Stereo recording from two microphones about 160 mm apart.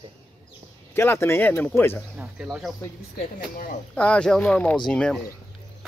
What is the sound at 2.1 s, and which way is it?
Speech, 5° right (ahead or behind).